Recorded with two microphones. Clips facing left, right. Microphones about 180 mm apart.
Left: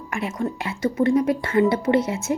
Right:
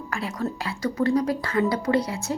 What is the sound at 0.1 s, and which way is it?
Speech, 20° left (ahead or behind).